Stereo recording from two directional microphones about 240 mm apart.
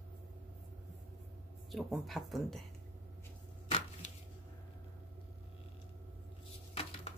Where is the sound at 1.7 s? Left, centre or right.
Centre.